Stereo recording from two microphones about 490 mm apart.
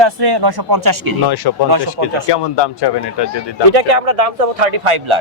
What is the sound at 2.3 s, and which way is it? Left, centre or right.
A man's voice, left.